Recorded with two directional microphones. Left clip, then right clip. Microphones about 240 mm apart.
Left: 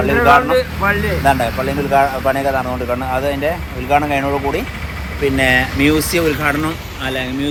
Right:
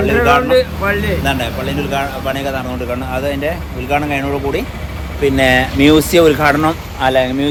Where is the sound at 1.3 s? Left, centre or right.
Centre.